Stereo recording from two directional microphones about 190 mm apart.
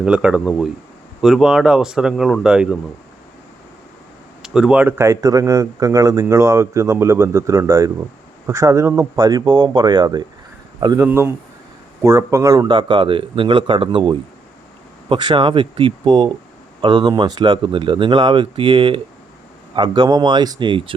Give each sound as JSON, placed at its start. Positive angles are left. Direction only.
{"t": 0.0, "sound": "speech", "side_deg": -5}
{"t": 4.4, "sound": "speech", "side_deg": -5}